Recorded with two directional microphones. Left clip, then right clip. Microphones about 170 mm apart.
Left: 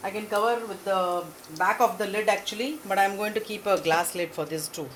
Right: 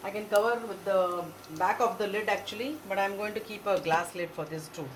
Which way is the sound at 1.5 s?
55° left (ahead or behind).